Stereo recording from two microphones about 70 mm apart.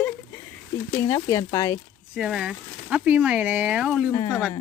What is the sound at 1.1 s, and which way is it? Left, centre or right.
Speech, left.